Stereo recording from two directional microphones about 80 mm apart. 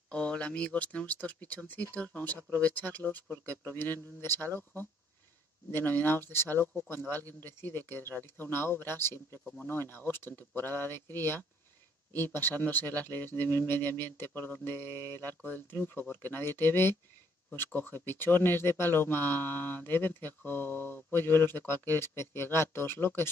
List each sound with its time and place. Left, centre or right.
0.1 s speech: centre
5.7 s speech: left
9.4 s speech: centre
9.7 s speech: left